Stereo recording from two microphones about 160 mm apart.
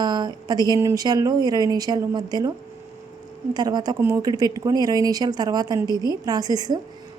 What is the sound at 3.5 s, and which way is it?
A woman's voice, 25° right (ahead or behind).